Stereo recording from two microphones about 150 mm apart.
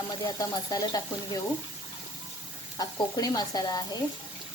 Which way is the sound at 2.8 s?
25° left (ahead or behind).